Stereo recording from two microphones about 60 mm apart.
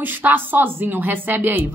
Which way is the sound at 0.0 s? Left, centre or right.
Right.